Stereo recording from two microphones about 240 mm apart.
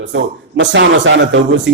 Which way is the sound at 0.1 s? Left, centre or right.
Right.